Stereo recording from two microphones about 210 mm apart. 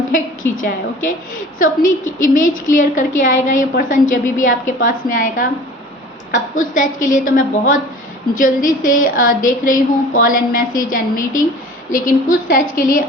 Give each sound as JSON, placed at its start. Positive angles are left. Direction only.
{"t": 0.1, "sound": "a woman's voice", "side_deg": 40}